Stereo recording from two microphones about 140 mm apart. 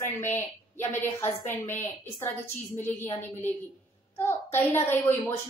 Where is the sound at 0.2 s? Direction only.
15° left (ahead or behind).